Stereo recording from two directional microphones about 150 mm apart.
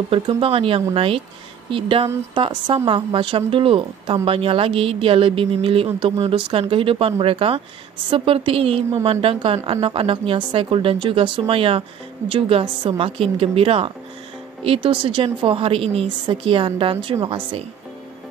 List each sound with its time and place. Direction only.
0.1 s a woman's voice: 40° right (ahead or behind)